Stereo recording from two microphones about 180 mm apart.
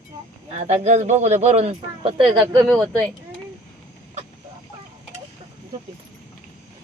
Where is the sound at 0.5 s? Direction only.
35° right (ahead or behind).